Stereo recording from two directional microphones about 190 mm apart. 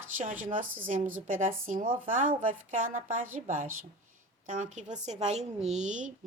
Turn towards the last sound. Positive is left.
turn(degrees=-40)  # may be behind; listen again after turning